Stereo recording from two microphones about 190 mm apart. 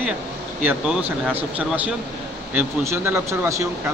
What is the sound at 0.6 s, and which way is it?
Speech, 10° right (ahead or behind).